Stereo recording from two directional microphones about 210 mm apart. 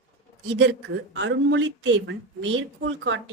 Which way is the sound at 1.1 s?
60° right (ahead or behind).